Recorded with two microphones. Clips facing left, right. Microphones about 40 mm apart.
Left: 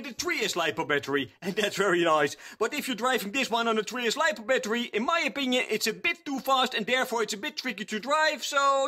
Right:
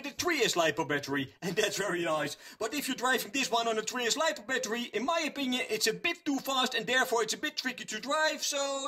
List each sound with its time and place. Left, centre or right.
0.3 s speech: centre
0.6 s speech: left
0.8 s speech: left
1.4 s speech: centre
1.9 s a man's voice: left
2.6 s speech: left
3.9 s speech: centre
4.2 s speech: left
5.8 s speech: centre
6.5 s speech: left
7.2 s speech: centre
8.1 s speech: left